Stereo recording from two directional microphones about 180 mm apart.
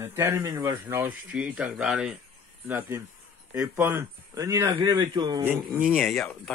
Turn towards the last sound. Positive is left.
turn(degrees=0)  # may be behind; listen again after turning